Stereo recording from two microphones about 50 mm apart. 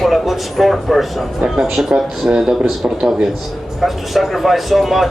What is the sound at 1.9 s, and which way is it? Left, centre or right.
Speech, centre.